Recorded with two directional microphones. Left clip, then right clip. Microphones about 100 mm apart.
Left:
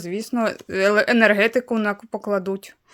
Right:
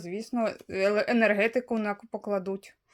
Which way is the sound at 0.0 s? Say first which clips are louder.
Left 7 dB; 35° left (ahead or behind).